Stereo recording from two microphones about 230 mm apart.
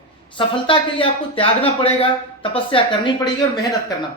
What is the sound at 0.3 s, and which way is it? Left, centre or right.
Speech, left.